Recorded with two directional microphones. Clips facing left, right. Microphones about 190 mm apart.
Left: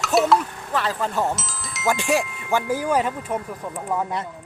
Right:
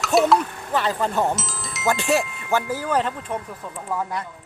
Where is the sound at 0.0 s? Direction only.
Centre (ahead or behind).